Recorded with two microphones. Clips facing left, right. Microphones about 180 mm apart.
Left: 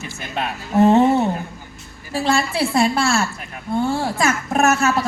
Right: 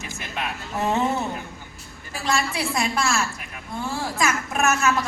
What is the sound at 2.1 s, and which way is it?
Speech, 30° left (ahead or behind).